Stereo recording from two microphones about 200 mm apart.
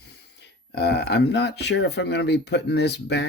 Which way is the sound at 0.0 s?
55° left (ahead or behind).